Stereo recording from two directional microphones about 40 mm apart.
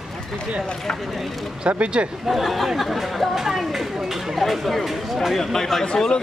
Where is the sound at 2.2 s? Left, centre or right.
Centre.